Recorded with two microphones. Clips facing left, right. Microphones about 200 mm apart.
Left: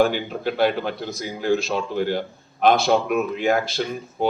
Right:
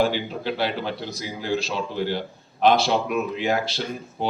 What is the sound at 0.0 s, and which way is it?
Speech, 50° left (ahead or behind).